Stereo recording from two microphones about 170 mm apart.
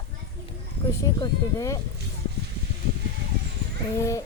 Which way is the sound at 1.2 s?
20° left (ahead or behind).